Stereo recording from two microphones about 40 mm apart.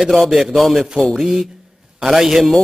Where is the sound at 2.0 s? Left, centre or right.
Centre.